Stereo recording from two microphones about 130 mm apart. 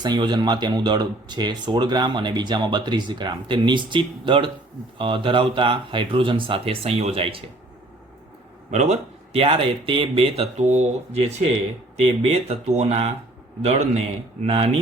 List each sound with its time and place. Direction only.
0.0 s speech: 35° right (ahead or behind)
8.7 s a man's voice: 60° right (ahead or behind)